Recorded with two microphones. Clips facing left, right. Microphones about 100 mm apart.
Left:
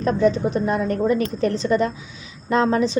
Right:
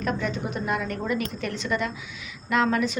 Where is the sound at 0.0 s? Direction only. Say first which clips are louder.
Left 9 dB; 35° left (ahead or behind).